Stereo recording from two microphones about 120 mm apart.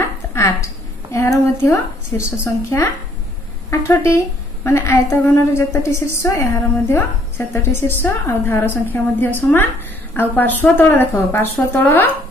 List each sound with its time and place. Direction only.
0.3 s a woman's voice: 20° left (ahead or behind)
10.3 s speech: 15° left (ahead or behind)